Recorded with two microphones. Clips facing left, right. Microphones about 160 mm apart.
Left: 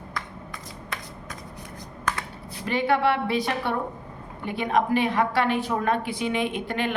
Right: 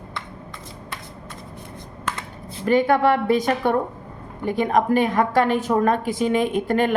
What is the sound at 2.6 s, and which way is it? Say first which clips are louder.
A woman's voice: right 5 dB; 45° right (ahead or behind).